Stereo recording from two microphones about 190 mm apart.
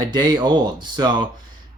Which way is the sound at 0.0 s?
20° right (ahead or behind).